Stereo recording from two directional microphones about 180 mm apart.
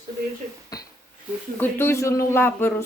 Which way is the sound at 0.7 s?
20° left (ahead or behind).